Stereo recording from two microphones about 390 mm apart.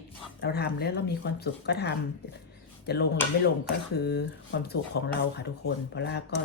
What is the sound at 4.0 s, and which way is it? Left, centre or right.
Speech, left.